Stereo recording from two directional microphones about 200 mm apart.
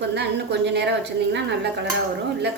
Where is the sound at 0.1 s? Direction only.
55° right (ahead or behind).